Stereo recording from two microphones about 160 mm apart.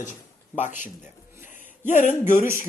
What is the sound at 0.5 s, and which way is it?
Speech, 50° left (ahead or behind).